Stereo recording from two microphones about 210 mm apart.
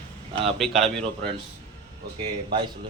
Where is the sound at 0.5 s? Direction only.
Centre (ahead or behind).